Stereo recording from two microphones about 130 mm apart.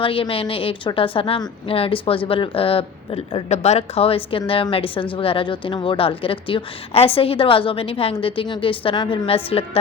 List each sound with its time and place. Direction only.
0.0 s a woman's voice: 45° left (ahead or behind)